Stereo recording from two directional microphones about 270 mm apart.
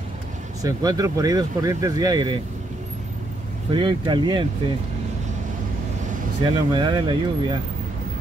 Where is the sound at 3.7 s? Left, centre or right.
Centre.